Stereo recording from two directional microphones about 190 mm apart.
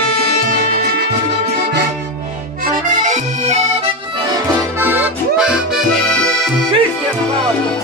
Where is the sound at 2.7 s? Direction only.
40° right (ahead or behind).